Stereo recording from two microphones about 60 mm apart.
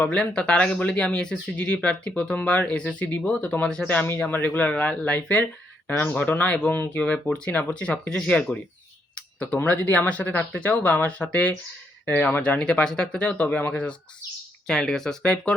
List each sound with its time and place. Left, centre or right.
0.0 s speech: centre
6.7 s speech: left
6.9 s speech: left
9.1 s a sound: left
9.9 s speech: left
14.7 s speech: centre